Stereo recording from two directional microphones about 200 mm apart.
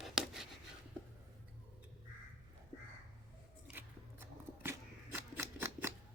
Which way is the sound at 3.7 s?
10° right (ahead or behind).